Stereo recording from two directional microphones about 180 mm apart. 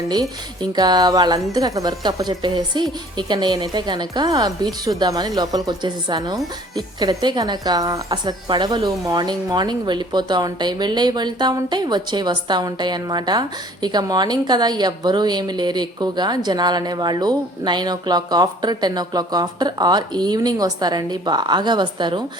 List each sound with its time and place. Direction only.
0.1 s a woman's voice: 20° right (ahead or behind)